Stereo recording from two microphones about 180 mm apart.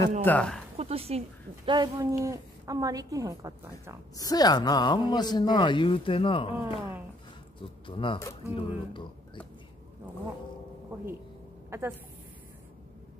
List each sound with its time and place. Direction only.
0.2 s speech: 10° left (ahead or behind)
0.7 s a sound: 35° right (ahead or behind)
1.7 s a woman's voice: 20° right (ahead or behind)
4.2 s speech: 20° left (ahead or behind)
7.8 s speech: 30° left (ahead or behind)
11.7 s a woman's voice: 15° right (ahead or behind)